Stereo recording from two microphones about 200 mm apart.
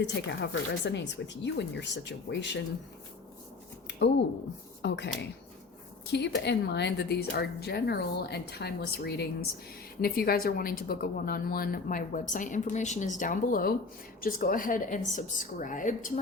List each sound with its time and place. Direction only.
0.0 s a woman's voice: 60° left (ahead or behind)
4.0 s a woman's voice: 60° left (ahead or behind); by 16.2 s 40° left (ahead or behind)